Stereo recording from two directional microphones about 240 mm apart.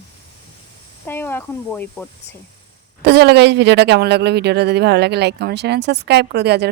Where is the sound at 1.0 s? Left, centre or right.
Centre.